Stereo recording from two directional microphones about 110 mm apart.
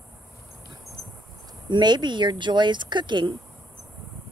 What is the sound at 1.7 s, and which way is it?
Speech, 45° right (ahead or behind).